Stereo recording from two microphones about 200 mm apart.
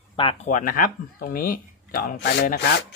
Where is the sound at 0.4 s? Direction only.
40° left (ahead or behind).